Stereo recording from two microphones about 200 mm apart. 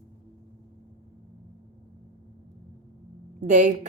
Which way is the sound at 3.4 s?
40° right (ahead or behind).